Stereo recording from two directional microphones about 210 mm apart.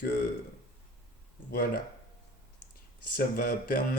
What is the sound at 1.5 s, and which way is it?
Mantra, 45° left (ahead or behind).